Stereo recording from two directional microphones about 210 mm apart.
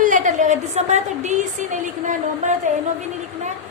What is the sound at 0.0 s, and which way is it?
A woman's voice, 35° right (ahead or behind).